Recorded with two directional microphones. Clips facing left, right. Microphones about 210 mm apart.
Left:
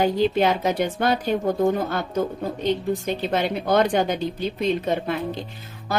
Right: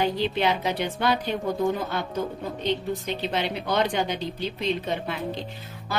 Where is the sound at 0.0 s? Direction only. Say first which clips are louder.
Left 5 dB; 45° left (ahead or behind).